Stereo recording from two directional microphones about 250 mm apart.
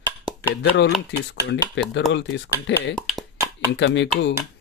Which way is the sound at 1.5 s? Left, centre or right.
Left.